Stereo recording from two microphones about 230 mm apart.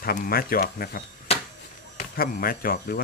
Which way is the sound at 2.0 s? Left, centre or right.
Left.